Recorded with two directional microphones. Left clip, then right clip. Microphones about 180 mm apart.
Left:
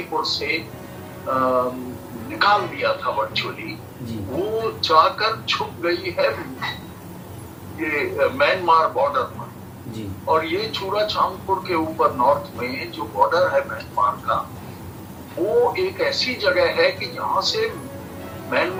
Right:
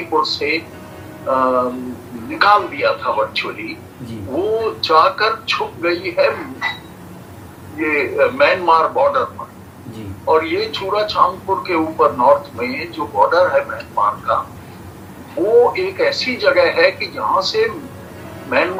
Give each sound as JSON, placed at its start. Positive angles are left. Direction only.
{"t": 0.2, "sound": "speech", "side_deg": -50}
{"t": 4.8, "sound": "speech", "side_deg": -50}
{"t": 7.8, "sound": "speech", "side_deg": -50}
{"t": 10.2, "sound": "speech", "side_deg": -50}
{"t": 15.7, "sound": "speech", "side_deg": -50}